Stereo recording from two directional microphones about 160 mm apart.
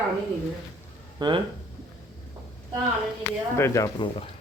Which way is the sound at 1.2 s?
25° right (ahead or behind).